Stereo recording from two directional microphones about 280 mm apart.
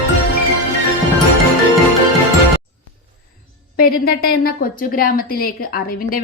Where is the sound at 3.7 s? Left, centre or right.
Left.